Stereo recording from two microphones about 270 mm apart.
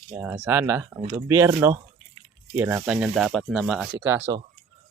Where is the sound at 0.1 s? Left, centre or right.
Centre.